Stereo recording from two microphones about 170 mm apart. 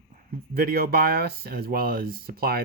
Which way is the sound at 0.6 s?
60° right (ahead or behind).